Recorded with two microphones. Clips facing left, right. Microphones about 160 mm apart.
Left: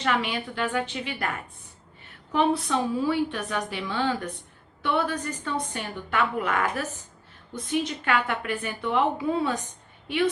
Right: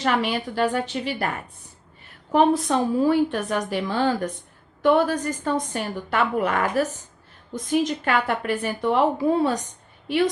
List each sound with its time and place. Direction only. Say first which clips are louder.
0.0 s a woman's voice: right 4 dB; 40° right (ahead or behind)
2.3 s a woman's voice: right 5 dB; 45° right (ahead or behind)